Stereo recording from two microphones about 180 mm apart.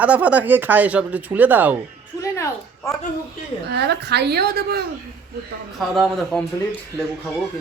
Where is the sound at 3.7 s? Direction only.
65° right (ahead or behind).